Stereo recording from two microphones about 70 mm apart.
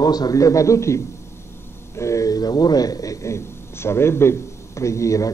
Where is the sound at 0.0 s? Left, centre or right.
Left.